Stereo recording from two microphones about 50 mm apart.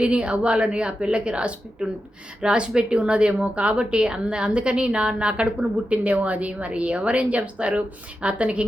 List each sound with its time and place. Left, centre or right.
0.0 s a woman's voice: right